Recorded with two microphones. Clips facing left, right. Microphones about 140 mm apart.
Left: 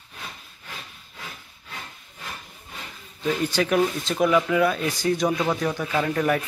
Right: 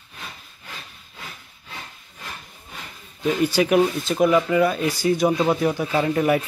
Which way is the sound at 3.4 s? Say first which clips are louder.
Right 4 dB; 10° right (ahead or behind).